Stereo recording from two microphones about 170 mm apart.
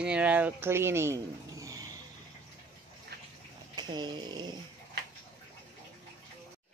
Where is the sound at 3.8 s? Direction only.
25° right (ahead or behind).